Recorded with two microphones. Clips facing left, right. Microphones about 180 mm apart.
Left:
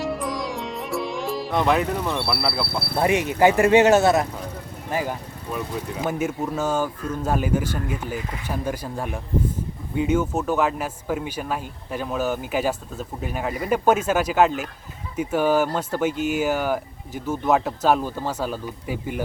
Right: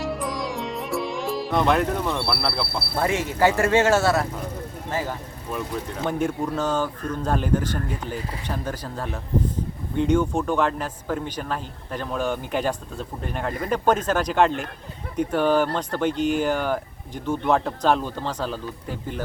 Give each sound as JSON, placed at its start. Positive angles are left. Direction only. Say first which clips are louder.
{"t": 0.0, "sound": "music", "louder": "left 1 dB", "side_deg": 0}
{"t": 3.0, "sound": "speech", "louder": "left 3 dB", "side_deg": 15}